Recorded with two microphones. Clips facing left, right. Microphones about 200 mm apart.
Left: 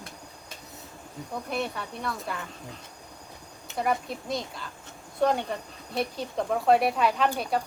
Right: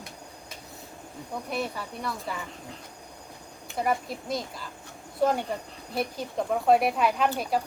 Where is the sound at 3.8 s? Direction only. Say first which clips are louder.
Even; centre (ahead or behind).